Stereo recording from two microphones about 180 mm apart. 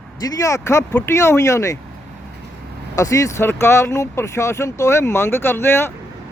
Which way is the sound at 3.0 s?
20° left (ahead or behind).